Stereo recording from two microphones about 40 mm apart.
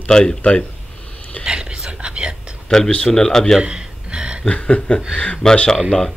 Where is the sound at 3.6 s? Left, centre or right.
Right.